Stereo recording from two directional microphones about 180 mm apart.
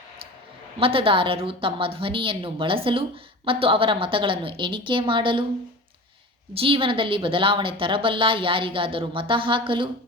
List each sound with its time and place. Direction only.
0.8 s a woman's voice: 30° right (ahead or behind)
6.5 s a woman's voice: 30° right (ahead or behind)